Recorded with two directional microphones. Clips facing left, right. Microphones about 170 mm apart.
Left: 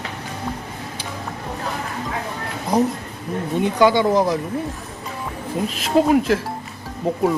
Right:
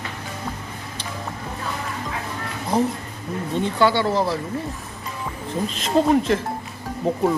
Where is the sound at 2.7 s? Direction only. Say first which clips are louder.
Left 2 dB; 15° left (ahead or behind).